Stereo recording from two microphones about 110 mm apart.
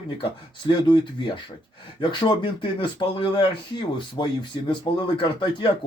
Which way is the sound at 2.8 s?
45° left (ahead or behind).